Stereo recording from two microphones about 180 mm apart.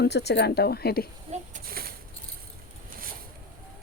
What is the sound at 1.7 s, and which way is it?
Keys jangling, 55° right (ahead or behind).